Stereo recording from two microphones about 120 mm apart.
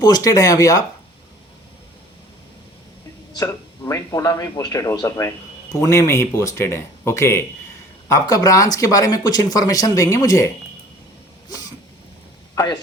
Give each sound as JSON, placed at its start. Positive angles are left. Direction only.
{"t": 0.0, "sound": "speech", "side_deg": 30}
{"t": 3.3, "sound": "speech", "side_deg": 30}
{"t": 11.4, "sound": "a sound", "side_deg": 30}
{"t": 12.5, "sound": "speech", "side_deg": 35}